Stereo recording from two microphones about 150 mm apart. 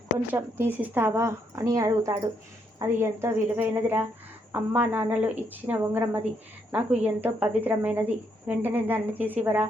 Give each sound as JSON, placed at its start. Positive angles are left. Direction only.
{"t": 0.3, "sound": "a woman's voice", "side_deg": -15}